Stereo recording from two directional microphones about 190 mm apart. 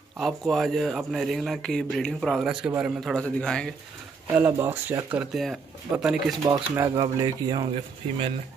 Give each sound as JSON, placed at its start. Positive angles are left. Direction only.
{"t": 0.2, "sound": "speech", "side_deg": 0}
{"t": 4.4, "sound": "speech", "side_deg": -10}
{"t": 6.4, "sound": "speech", "side_deg": -15}